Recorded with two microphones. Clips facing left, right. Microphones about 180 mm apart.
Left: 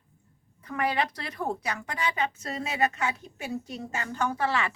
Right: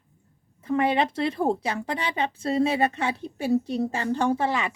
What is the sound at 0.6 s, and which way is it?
A woman's voice, 25° right (ahead or behind).